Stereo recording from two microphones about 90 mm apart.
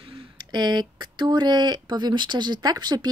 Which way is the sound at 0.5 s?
55° right (ahead or behind).